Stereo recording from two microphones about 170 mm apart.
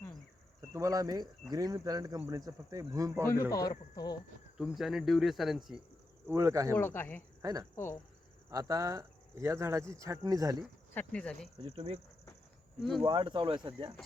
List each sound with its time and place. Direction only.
0.7 s speech: 20° right (ahead or behind)
3.5 s a man's voice: 20° left (ahead or behind)
4.5 s speech: centre (ahead or behind)
6.2 s speech: 15° right (ahead or behind)
6.7 s speech: 15° left (ahead or behind)
7.4 s speech: 20° right (ahead or behind)
10.9 s speech: 5° left (ahead or behind)
11.6 s speech: 25° right (ahead or behind)
13.0 s speech: 30° right (ahead or behind)